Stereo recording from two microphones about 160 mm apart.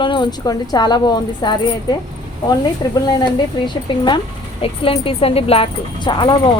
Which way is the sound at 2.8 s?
25° left (ahead or behind).